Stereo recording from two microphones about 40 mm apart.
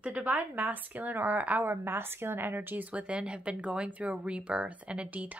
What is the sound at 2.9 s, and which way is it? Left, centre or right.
Speech, right.